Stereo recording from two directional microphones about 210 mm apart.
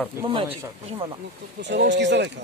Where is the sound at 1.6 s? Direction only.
55° right (ahead or behind).